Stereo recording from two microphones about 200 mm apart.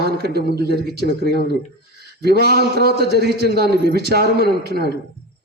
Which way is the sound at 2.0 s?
55° right (ahead or behind).